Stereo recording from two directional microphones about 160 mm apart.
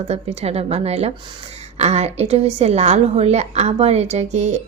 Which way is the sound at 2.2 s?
40° right (ahead or behind).